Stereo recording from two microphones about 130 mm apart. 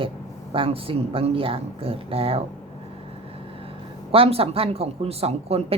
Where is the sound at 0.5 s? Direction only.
45° right (ahead or behind).